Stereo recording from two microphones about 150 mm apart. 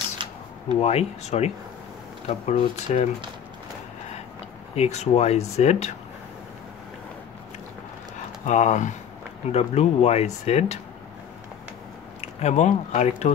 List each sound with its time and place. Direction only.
0.2 s a sound: 35° right (ahead or behind)
0.7 s speech: 45° left (ahead or behind)
4.7 s speech: 45° left (ahead or behind)
8.5 s speech: 55° left (ahead or behind)
12.2 s speech: 45° left (ahead or behind)